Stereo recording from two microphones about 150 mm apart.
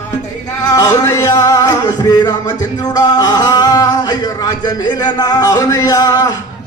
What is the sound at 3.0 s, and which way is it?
Speech, 25° left (ahead or behind).